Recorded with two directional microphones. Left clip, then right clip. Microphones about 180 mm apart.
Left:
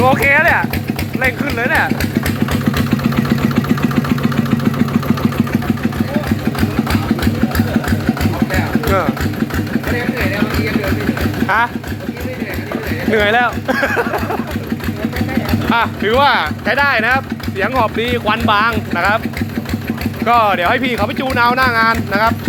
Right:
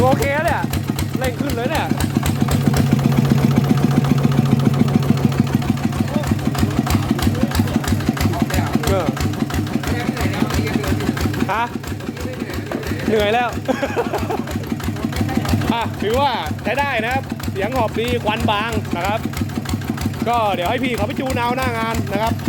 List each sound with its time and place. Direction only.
0.0 s clip-clop: 20° right (ahead or behind)
1.5 s speech: 25° right (ahead or behind)
11.4 s speech: 30° right (ahead or behind)
13.1 s speech: 30° right (ahead or behind)
15.7 s speech: 10° right (ahead or behind)
20.2 s speech: 20° right (ahead or behind)